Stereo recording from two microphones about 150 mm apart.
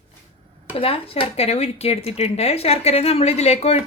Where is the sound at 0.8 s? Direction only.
40° left (ahead or behind).